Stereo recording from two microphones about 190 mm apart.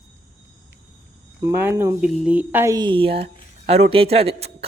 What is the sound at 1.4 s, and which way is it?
Speech, 10° right (ahead or behind).